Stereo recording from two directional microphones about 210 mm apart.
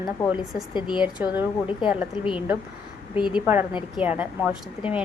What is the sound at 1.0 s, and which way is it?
A woman's voice, 5° right (ahead or behind).